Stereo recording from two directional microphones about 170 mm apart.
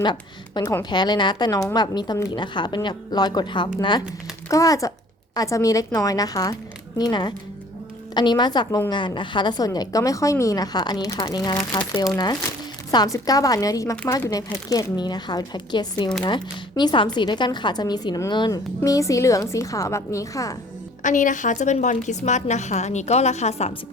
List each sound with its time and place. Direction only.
0.0 s a woman's voice: 25° left (ahead or behind)
21.0 s a woman's voice: 50° left (ahead or behind)